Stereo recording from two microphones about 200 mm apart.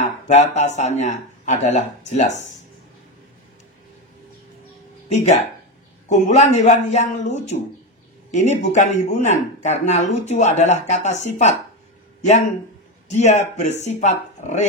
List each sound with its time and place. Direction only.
0.0 s speech: 35° left (ahead or behind)
6.0 s speech: 35° left (ahead or behind)
13.1 s speech: 35° left (ahead or behind)